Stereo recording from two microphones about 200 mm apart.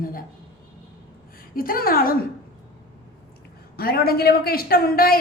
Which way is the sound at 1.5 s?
45° left (ahead or behind).